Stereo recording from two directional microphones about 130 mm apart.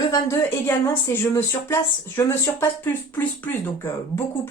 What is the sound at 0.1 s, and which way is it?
A woman's voice, 20° left (ahead or behind).